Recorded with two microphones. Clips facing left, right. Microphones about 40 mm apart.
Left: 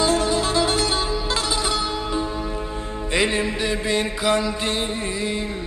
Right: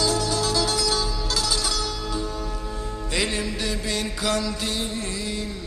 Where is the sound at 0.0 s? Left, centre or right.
Left.